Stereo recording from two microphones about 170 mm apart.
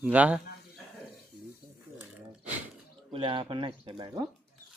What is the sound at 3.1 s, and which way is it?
Speech, 30° right (ahead or behind).